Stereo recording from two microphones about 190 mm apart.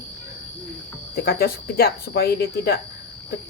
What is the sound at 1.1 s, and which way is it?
Speech, 50° left (ahead or behind).